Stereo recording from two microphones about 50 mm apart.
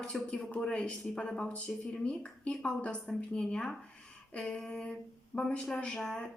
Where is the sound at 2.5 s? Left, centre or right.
Centre.